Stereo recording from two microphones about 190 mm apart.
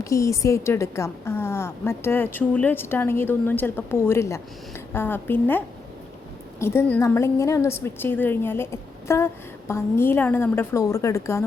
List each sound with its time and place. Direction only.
0.0 s a woman's voice: 15° left (ahead or behind)